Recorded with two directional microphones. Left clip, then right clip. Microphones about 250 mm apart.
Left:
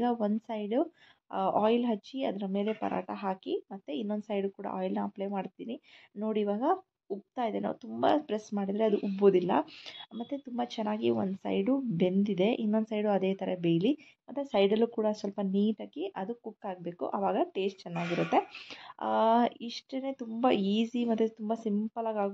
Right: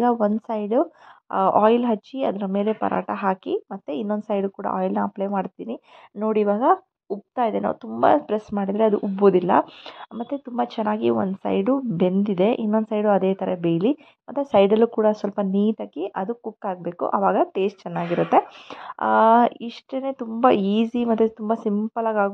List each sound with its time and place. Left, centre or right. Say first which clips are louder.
0.0 s speech: right 10 dB; right